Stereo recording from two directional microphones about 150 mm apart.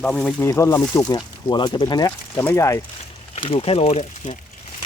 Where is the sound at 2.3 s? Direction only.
15° left (ahead or behind).